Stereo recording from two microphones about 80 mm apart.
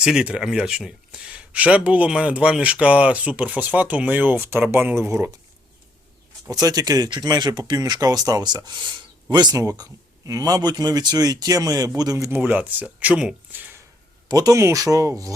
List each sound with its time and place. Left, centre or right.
0.0 s speech: centre; by 5.3 s right
6.5 s speech: right
7.1 s speech: right
9.6 s speech: right
12.4 s speech: centre
14.3 s speech: right